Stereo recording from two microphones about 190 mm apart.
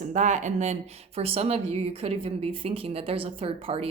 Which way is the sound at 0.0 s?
40° right (ahead or behind).